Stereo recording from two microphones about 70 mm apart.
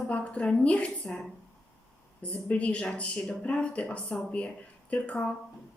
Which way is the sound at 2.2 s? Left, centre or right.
Centre.